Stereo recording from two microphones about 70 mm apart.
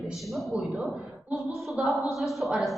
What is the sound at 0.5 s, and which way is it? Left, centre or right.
A woman's voice, centre.